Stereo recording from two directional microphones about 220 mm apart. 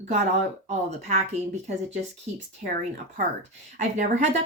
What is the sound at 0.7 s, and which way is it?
Speech, 30° right (ahead or behind).